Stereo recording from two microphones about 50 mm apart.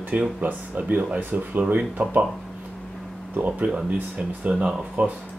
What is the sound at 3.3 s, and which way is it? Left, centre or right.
Speech, right.